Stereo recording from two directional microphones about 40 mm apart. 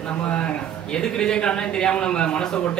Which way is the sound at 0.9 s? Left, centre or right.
Centre.